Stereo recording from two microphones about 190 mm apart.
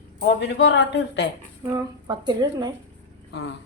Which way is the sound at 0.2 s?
65° left (ahead or behind).